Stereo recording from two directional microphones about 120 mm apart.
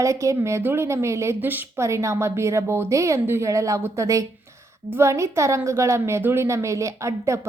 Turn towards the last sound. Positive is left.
turn(degrees=-25)  # may be behind; listen again after turning